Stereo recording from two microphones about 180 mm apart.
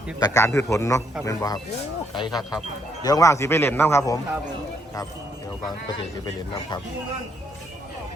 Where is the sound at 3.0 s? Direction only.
20° left (ahead or behind).